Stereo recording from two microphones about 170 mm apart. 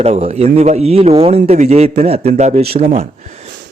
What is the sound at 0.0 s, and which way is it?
Speech, 40° right (ahead or behind).